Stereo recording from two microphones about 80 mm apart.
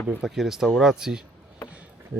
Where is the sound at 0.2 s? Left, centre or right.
Centre.